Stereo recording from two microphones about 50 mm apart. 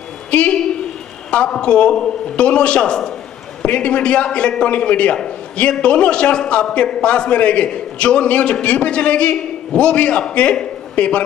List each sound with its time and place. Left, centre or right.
0.3 s a woman's voice: left